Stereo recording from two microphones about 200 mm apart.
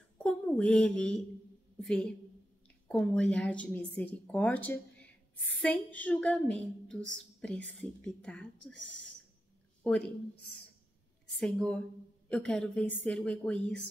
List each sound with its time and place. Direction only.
0.2 s a woman's voice: 5° left (ahead or behind)
11.3 s a woman's voice: 5° left (ahead or behind)